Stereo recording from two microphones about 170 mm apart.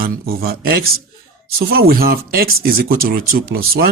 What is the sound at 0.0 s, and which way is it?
Speech, 65° right (ahead or behind).